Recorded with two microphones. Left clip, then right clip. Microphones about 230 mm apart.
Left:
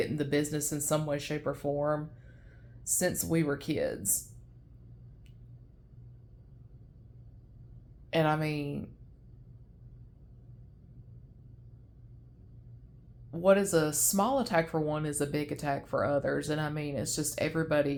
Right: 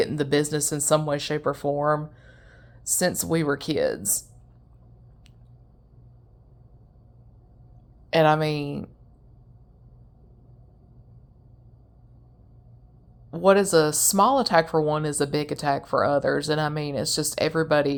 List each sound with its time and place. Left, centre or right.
0.0 s speech: right
8.1 s speech: right
13.3 s speech: right